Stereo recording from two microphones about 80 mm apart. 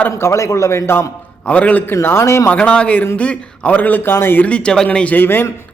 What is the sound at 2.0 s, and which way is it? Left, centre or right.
Speech, left.